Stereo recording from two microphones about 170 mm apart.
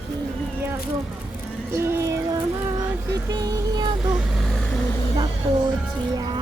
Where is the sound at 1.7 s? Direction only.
15° right (ahead or behind).